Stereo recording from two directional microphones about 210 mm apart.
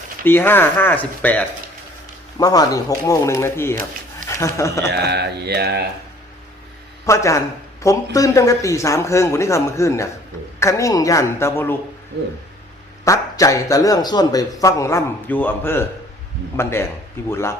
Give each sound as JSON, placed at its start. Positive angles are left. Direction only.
{"t": 0.3, "sound": "speech", "side_deg": 10}
{"t": 4.9, "sound": "speech", "side_deg": -50}
{"t": 7.0, "sound": "speech", "side_deg": 15}
{"t": 13.1, "sound": "speech", "side_deg": 15}